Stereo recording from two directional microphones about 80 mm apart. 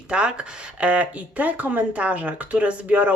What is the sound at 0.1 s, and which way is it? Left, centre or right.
Speech, centre.